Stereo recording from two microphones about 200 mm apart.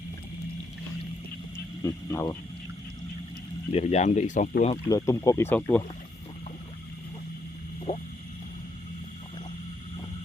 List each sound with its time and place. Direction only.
1.8 s speech: 15° left (ahead or behind)
3.7 s speech: 30° left (ahead or behind)
4.9 s speech: 15° left (ahead or behind)
7.9 s speech: 30° left (ahead or behind)